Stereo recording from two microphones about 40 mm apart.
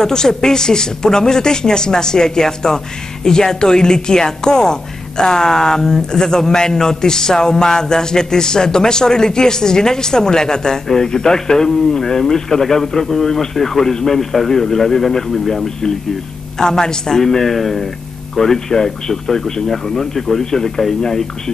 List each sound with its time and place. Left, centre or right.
0.0 s speech: centre